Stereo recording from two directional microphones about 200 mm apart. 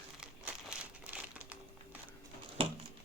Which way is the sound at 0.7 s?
5° right (ahead or behind).